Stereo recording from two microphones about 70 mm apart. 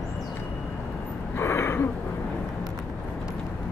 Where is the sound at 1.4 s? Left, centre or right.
Left.